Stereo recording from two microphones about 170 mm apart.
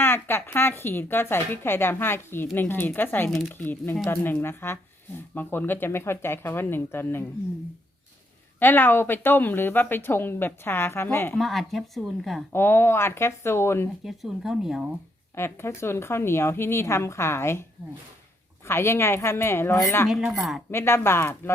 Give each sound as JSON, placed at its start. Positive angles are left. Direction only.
{"t": 0.0, "sound": "speech", "side_deg": 15}
{"t": 8.5, "sound": "speech", "side_deg": 10}
{"t": 11.3, "sound": "speech", "side_deg": 0}
{"t": 12.5, "sound": "speech", "side_deg": 15}
{"t": 14.0, "sound": "speech", "side_deg": 0}
{"t": 15.4, "sound": "speech", "side_deg": 15}
{"t": 18.7, "sound": "speech", "side_deg": 15}
{"t": 20.1, "sound": "speech", "side_deg": 0}
{"t": 20.7, "sound": "speech", "side_deg": 15}